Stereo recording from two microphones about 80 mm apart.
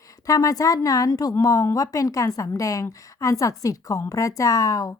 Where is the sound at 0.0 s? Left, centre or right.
Left.